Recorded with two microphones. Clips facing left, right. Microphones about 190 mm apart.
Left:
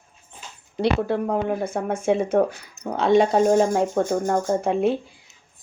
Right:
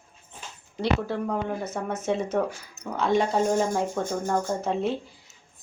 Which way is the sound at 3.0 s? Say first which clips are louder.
Left 6 dB; 70° left (ahead or behind).